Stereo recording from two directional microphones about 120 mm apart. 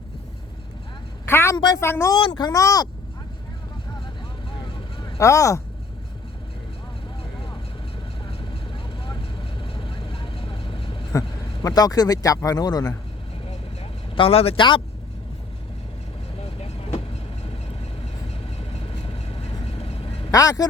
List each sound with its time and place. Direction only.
1.2 s a woman's voice: 20° left (ahead or behind)
1.5 s speech: 35° left (ahead or behind)
1.8 s speech: 20° left (ahead or behind)
2.1 s speech: 40° left (ahead or behind)
5.1 s speech: 25° left (ahead or behind)
8.3 s vehicle: 45° left (ahead or behind)
11.1 s speech: 30° left (ahead or behind)
14.2 s speech: 55° left (ahead or behind)
16.6 s vehicle: 60° left (ahead or behind)
18.7 s vehicle: 50° left (ahead or behind)
20.3 s speech: 30° left (ahead or behind)